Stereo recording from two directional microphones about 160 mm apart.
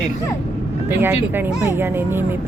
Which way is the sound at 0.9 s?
10° right (ahead or behind).